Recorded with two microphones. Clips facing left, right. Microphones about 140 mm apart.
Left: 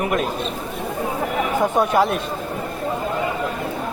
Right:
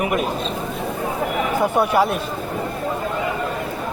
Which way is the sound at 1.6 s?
5° right (ahead or behind).